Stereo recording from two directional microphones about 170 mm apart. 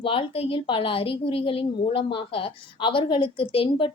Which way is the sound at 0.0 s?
30° left (ahead or behind).